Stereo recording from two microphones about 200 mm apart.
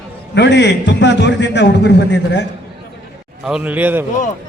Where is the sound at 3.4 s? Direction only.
5° right (ahead or behind).